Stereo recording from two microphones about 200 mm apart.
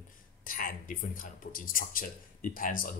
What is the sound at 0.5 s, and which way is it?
Speech, 45° left (ahead or behind).